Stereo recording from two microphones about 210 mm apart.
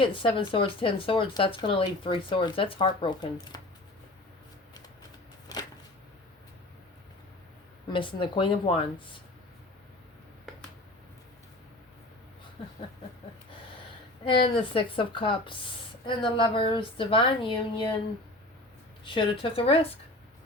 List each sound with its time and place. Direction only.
0.0 s speech: 25° left (ahead or behind)
5.5 s a sound: 15° left (ahead or behind)
7.9 s speech: 25° left (ahead or behind)
10.5 s finger snapping: centre (ahead or behind)
14.7 s speech: 25° left (ahead or behind)
19.0 s speech: 25° left (ahead or behind)